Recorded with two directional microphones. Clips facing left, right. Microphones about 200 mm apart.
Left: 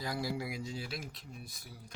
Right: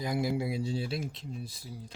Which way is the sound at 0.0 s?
20° right (ahead or behind).